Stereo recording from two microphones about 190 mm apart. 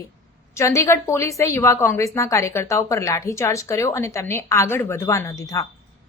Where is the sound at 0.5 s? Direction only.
15° left (ahead or behind).